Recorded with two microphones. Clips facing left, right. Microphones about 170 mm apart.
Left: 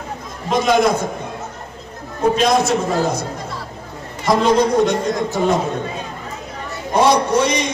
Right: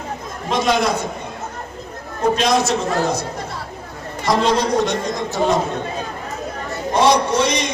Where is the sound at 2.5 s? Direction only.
55° left (ahead or behind).